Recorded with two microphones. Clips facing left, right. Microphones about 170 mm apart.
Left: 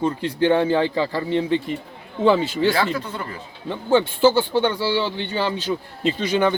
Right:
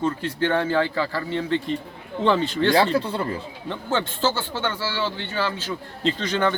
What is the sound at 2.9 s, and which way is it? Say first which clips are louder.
Speech: right 5 dB; 30° right (ahead or behind).